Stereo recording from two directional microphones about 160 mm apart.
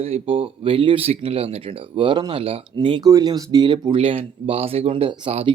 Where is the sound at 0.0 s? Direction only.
35° right (ahead or behind).